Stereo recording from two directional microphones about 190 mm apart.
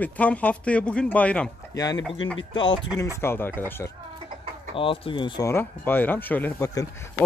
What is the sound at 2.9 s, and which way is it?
Speech, 15° left (ahead or behind).